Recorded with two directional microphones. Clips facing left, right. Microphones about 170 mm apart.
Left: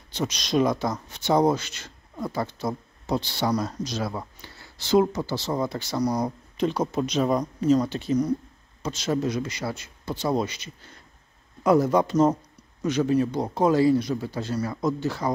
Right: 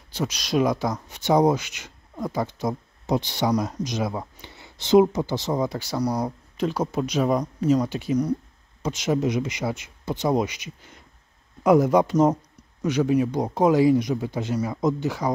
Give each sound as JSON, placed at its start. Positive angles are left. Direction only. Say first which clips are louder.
{"t": 0.1, "sound": "speech", "louder": "even", "side_deg": -5}